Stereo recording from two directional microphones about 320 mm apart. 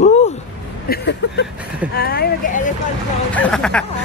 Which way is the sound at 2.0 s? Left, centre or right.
Left.